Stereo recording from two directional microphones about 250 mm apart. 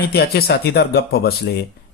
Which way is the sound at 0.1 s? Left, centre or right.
Left.